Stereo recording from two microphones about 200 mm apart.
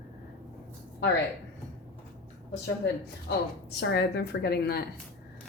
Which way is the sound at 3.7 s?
55° left (ahead or behind).